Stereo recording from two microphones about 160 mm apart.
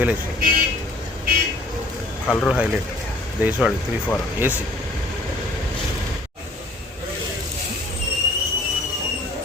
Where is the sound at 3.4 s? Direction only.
10° right (ahead or behind).